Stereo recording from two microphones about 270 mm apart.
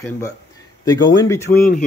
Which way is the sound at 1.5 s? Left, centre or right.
Left.